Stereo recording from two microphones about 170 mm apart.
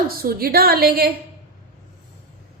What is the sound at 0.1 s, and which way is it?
A woman's voice, 60° right (ahead or behind).